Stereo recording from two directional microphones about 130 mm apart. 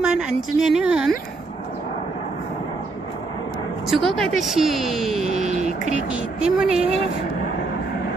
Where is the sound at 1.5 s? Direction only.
45° left (ahead or behind).